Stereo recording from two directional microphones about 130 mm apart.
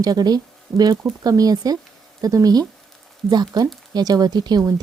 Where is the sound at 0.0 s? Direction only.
30° right (ahead or behind).